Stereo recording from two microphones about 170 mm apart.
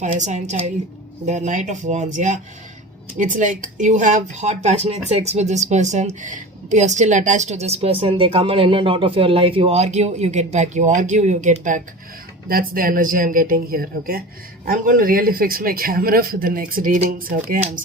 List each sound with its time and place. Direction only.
0.0 s speech: 45° right (ahead or behind)
12.5 s speech: 60° right (ahead or behind)